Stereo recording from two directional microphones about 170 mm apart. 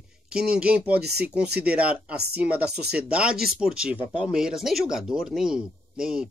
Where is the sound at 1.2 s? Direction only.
5° right (ahead or behind).